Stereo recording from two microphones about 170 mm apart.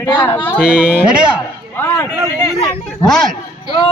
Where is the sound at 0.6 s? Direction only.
5° right (ahead or behind).